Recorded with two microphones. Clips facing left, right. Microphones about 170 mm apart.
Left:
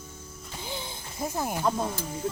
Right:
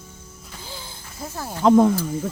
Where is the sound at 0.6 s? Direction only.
20° left (ahead or behind).